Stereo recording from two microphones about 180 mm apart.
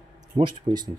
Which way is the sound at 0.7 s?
25° right (ahead or behind).